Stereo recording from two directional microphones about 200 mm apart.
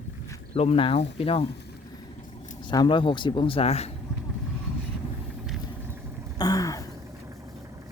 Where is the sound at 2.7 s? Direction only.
25° left (ahead or behind).